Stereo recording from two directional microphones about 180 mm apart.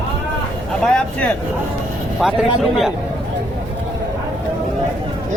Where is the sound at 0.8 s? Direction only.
5° left (ahead or behind).